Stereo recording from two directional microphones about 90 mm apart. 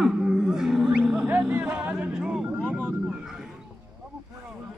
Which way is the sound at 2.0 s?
10° right (ahead or behind).